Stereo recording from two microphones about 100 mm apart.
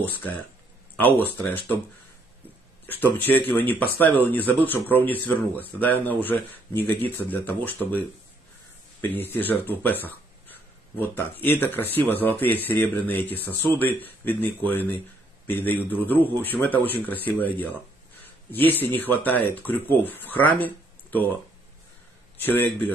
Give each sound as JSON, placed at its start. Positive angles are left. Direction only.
{"t": 0.0, "sound": "speech", "side_deg": 20}
{"t": 2.9, "sound": "speech", "side_deg": 20}
{"t": 9.0, "sound": "speech", "side_deg": 20}
{"t": 22.4, "sound": "speech", "side_deg": 20}